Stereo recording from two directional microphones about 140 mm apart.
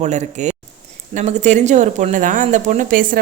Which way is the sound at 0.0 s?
55° right (ahead or behind).